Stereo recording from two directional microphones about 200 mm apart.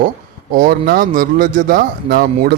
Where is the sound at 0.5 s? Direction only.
45° right (ahead or behind).